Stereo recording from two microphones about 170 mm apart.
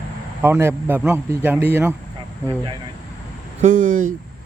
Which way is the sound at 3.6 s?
50° right (ahead or behind).